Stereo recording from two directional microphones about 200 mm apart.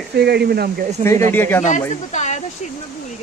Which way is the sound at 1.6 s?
35° left (ahead or behind).